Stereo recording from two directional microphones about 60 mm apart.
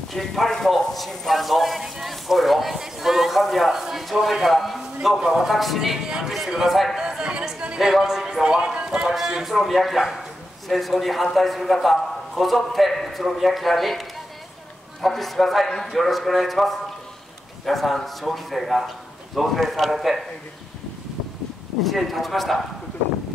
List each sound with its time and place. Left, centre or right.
0.1 s speech: centre
21.8 s speech: centre